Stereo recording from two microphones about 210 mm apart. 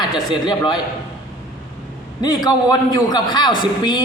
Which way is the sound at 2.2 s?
20° left (ahead or behind).